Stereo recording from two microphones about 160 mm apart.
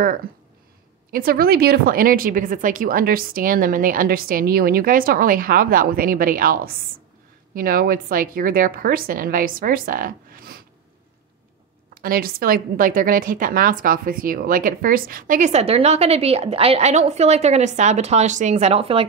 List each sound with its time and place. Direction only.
1.1 s a woman's voice: 65° right (ahead or behind)
11.9 s a woman's voice: 65° right (ahead or behind); by 19.0 s 35° right (ahead or behind)